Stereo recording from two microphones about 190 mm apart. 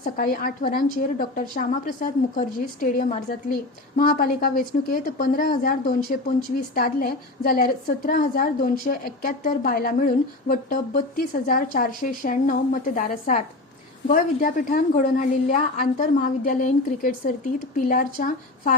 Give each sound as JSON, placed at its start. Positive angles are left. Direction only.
{"t": 0.0, "sound": "a woman's voice", "side_deg": 45}